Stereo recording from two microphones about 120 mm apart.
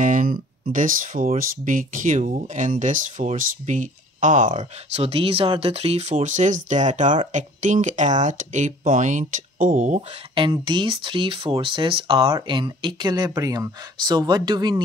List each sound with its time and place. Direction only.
0.0 s speech: 90° right
5.0 s speech: 55° right (ahead or behind); by 10.0 s 90° right
10.3 s speech: 40° right (ahead or behind)